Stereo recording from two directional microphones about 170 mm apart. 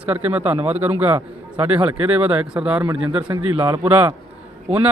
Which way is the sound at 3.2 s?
25° right (ahead or behind).